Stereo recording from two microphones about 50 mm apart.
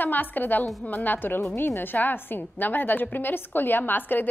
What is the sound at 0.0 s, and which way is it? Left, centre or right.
A woman's voice, left.